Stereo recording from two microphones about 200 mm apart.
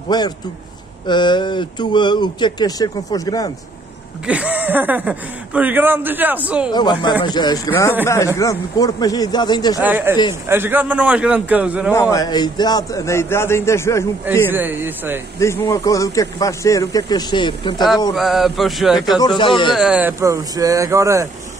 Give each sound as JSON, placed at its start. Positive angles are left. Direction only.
{"t": 0.1, "sound": "speech", "side_deg": 20}
{"t": 4.3, "sound": "speech", "side_deg": -5}
{"t": 6.7, "sound": "speech", "side_deg": 20}
{"t": 9.8, "sound": "speech", "side_deg": -10}
{"t": 11.9, "sound": "speech", "side_deg": 15}
{"t": 14.5, "sound": "speech", "side_deg": -10}
{"t": 15.3, "sound": "speech", "side_deg": 15}
{"t": 18.1, "sound": "speech", "side_deg": 0}
{"t": 19.1, "sound": "speech", "side_deg": 20}
{"t": 19.7, "sound": "speech", "side_deg": -5}